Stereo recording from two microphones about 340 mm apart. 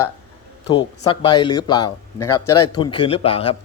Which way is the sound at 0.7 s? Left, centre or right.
Centre.